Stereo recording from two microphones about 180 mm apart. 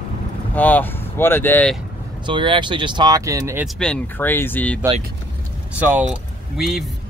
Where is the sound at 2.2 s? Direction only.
25° right (ahead or behind).